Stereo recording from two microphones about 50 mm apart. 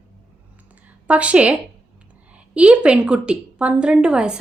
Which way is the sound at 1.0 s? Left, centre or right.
Right.